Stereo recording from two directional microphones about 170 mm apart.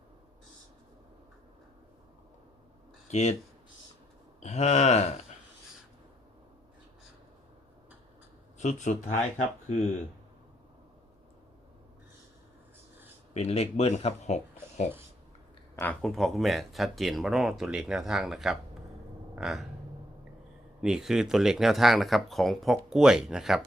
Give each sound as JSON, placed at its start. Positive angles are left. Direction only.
{"t": 3.1, "sound": "speech", "side_deg": 40}
{"t": 4.4, "sound": "speech", "side_deg": 40}
{"t": 8.5, "sound": "speech", "side_deg": 45}
{"t": 13.3, "sound": "speech", "side_deg": 40}
{"t": 15.7, "sound": "speech", "side_deg": 10}
{"t": 20.8, "sound": "speech", "side_deg": -5}